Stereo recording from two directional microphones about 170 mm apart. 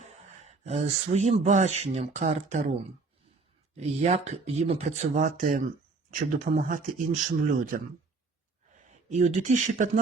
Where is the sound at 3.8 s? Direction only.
40° right (ahead or behind).